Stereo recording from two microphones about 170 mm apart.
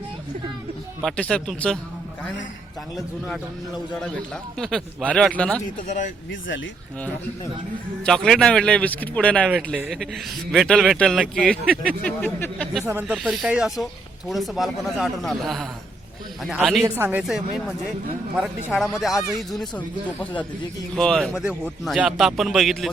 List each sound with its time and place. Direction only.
1.0 s a man's voice: 5° left (ahead or behind)
4.5 s a man's voice: 5° left (ahead or behind)
5.6 s speech: 45° left (ahead or behind)
8.0 s a man's voice: 5° left (ahead or behind)
12.8 s speech: 15° right (ahead or behind)
13.1 s a man's voice: centre (ahead or behind)
16.8 s a man's voice: 15° right (ahead or behind)